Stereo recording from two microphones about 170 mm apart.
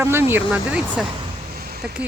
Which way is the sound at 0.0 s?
15° right (ahead or behind).